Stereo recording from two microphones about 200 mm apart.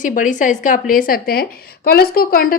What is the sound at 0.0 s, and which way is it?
A woman's voice, 40° left (ahead or behind).